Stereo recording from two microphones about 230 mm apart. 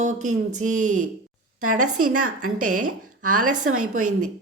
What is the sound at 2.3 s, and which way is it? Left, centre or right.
A woman's voice, right.